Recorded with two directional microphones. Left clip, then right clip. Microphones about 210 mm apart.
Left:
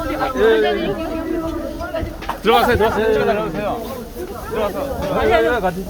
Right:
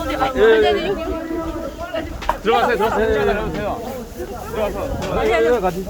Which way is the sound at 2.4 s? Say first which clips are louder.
Left 3 dB; 50° left (ahead or behind).